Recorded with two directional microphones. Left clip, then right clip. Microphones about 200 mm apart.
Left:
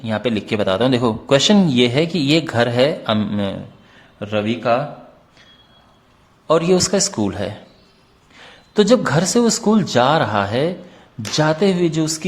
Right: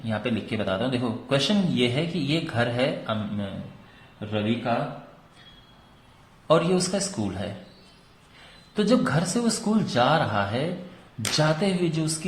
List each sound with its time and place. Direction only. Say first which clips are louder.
0.0 s a man's voice: left 8 dB; 45° left (ahead or behind)
6.5 s a man's voice: left 6 dB; 45° left (ahead or behind)
8.7 s a man's voice: left 9 dB; 40° left (ahead or behind)